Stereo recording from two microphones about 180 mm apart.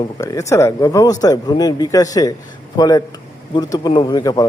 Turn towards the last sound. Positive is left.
turn(degrees=20)  # may be behind; listen again after turning